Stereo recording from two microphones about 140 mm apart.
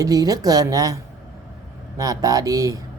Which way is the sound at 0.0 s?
25° right (ahead or behind).